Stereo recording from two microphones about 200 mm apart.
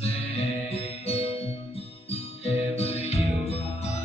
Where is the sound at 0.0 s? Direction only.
30° left (ahead or behind).